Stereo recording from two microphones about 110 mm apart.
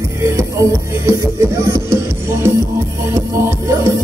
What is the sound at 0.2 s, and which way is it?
Music, 25° right (ahead or behind).